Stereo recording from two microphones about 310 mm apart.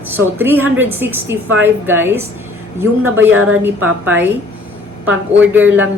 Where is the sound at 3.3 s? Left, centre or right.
Right.